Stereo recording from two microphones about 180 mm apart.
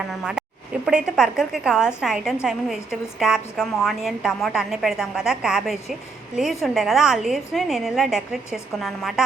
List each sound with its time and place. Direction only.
0.1 s a woman's voice: centre (ahead or behind)